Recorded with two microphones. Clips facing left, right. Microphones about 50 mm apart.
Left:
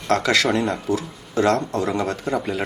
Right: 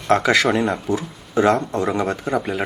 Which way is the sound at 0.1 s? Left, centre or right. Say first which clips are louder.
Right 3 dB; centre.